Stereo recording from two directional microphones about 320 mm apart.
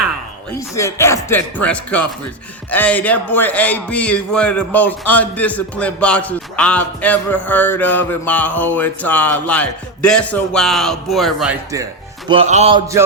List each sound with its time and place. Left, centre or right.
0.8 s music: centre
2.6 s a man's voice: centre
12.3 s speech: centre